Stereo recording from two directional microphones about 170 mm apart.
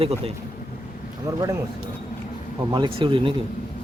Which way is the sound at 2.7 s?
30° right (ahead or behind).